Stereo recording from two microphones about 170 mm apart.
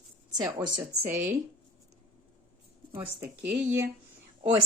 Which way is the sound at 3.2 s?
10° right (ahead or behind).